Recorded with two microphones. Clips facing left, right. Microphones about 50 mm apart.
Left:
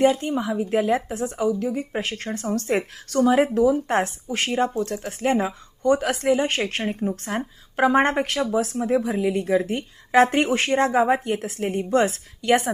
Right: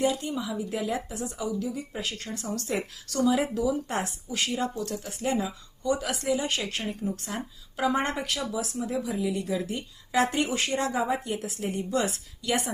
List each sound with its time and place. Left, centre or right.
0.0 s a woman's voice: left